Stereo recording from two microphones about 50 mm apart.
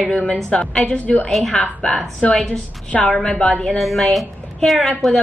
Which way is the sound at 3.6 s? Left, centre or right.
Centre.